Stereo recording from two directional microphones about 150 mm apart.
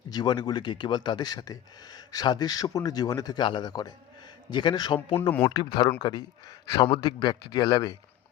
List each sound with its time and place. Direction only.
0.1 s a man's voice: 30° left (ahead or behind)